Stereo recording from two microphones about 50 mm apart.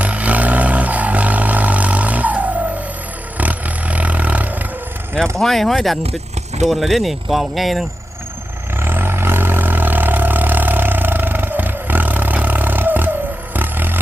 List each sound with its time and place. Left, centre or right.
0.0 s vehicle: right
5.4 s speech: centre
8.8 s vehicle: right